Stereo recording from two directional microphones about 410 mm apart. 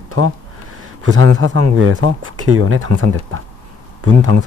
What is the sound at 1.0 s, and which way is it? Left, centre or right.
Speech, right.